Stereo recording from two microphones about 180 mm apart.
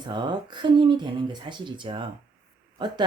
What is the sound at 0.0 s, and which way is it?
Speech, 25° right (ahead or behind).